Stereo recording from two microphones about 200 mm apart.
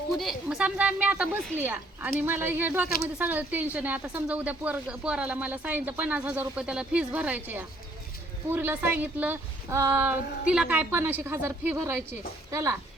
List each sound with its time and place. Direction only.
0.1 s a woman's voice: centre (ahead or behind); by 12.7 s 15° right (ahead or behind)